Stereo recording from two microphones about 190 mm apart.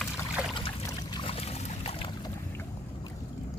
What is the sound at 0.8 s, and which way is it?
Boat, 25° left (ahead or behind).